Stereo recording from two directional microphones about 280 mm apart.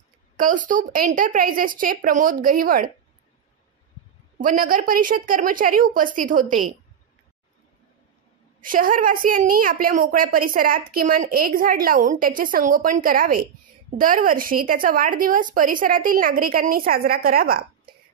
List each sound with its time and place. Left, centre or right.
0.4 s a woman's voice: right
4.4 s a woman's voice: right
8.5 s a woman's voice: right